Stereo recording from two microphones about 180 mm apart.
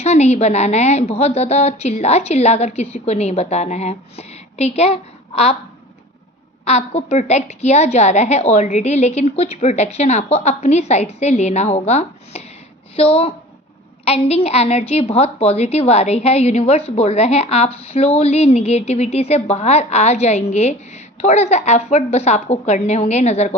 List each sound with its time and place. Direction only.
0.0 s a woman's voice: 35° left (ahead or behind)
6.7 s a woman's voice: 35° left (ahead or behind)